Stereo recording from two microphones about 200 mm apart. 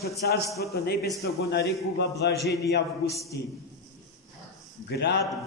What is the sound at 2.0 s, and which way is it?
Speech, 55° left (ahead or behind).